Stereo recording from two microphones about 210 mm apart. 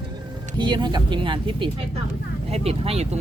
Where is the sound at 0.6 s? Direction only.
20° right (ahead or behind).